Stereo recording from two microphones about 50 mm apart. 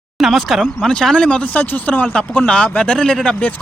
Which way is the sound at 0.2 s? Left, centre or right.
Centre.